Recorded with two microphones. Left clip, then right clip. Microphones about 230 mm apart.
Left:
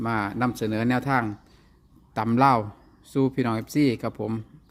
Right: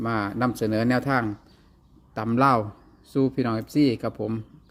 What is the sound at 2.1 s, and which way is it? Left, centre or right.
Speech, left.